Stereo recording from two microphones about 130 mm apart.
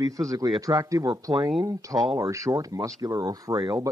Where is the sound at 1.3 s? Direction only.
Centre (ahead or behind).